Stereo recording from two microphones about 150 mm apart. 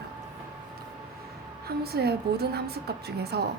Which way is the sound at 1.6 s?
90° right.